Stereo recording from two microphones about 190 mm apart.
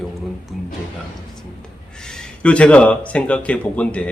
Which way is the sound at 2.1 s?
5° left (ahead or behind).